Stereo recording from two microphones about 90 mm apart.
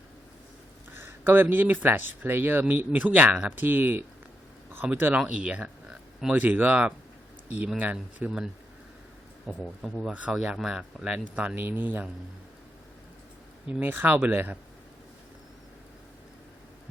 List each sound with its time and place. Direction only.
0.9 s speech: 25° right (ahead or behind); by 6.3 s 5° right (ahead or behind)
6.3 s speech: 20° right (ahead or behind)
8.2 s speech: 15° right (ahead or behind)
9.5 s speech: 15° right (ahead or behind)
13.7 s speech: 20° right (ahead or behind)